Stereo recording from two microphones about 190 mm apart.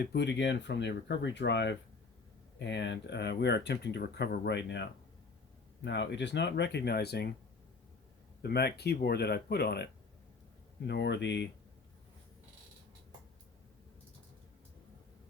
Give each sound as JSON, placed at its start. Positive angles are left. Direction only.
{"t": 0.0, "sound": "speech", "side_deg": 60}
{"t": 8.4, "sound": "speech", "side_deg": 55}